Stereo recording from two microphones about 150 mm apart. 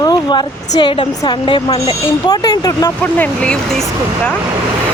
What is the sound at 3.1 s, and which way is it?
Speech, 10° left (ahead or behind).